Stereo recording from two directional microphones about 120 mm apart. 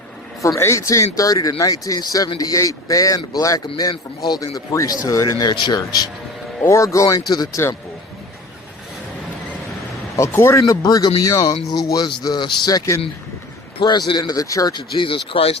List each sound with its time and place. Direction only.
0.4 s speech: 25° left (ahead or behind)
10.2 s speech: 25° left (ahead or behind)
13.7 s a man's voice: 40° left (ahead or behind)